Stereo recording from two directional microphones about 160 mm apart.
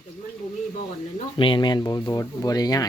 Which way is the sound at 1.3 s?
30° left (ahead or behind).